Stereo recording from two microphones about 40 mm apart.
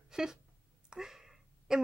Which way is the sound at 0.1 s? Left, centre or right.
Centre.